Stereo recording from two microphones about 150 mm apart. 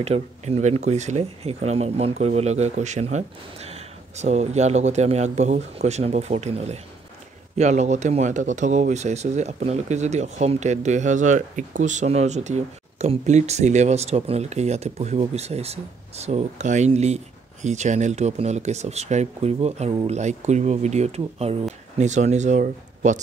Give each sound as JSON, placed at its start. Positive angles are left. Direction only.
{"t": 0.0, "sound": "speech", "side_deg": -45}